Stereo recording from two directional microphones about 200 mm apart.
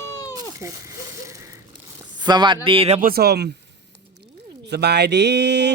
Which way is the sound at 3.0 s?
45° right (ahead or behind).